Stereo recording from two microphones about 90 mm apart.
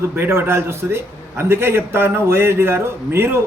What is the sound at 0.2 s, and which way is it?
A man's voice, 25° right (ahead or behind).